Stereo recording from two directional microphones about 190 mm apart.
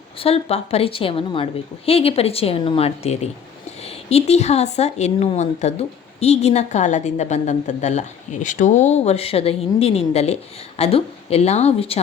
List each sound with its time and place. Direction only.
0.2 s a woman's voice: 30° left (ahead or behind)